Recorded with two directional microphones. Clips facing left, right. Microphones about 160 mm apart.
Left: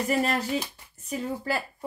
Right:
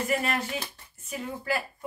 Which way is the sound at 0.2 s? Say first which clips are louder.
Left 4 dB; 35° left (ahead or behind).